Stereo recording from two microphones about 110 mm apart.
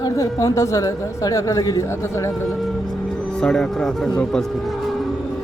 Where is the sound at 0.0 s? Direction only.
30° left (ahead or behind).